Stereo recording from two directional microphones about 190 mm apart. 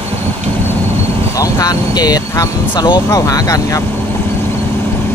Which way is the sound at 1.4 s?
20° left (ahead or behind).